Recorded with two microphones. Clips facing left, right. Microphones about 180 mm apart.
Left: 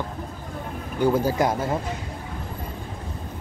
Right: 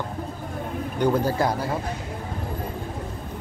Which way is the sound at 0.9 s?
10° left (ahead or behind).